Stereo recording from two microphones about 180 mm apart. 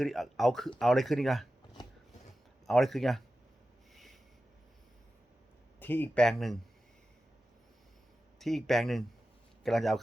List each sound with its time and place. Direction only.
0.0 s speech: centre (ahead or behind)
1.8 s a sound: 25° left (ahead or behind)
2.6 s speech: centre (ahead or behind)
3.9 s a sound: centre (ahead or behind)
5.8 s speech: 10° left (ahead or behind)
8.4 s speech: centre (ahead or behind)